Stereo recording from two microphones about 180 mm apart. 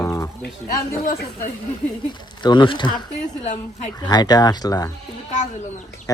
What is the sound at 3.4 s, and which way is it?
Speech, 40° left (ahead or behind).